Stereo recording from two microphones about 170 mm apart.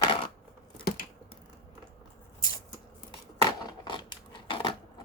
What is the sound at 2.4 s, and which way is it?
Shuffling cards, 20° left (ahead or behind).